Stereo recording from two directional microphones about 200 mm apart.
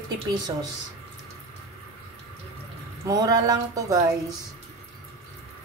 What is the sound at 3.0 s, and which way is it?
Speech, 15° right (ahead or behind).